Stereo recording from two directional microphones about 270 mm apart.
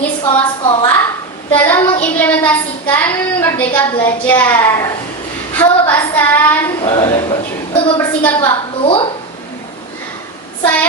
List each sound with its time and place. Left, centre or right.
0.3 s a woman's voice: centre
1.5 s child singing: centre
3.9 s a woman's voice: centre
7.9 s a woman's voice: centre
8.4 s a woman's voice: centre